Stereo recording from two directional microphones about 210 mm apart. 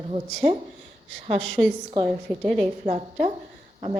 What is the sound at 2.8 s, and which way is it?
Speech, 30° right (ahead or behind).